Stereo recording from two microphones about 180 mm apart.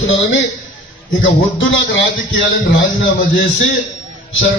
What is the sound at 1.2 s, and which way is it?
Speech, 90° left.